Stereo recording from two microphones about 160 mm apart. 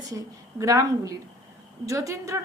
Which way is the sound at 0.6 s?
20° right (ahead or behind).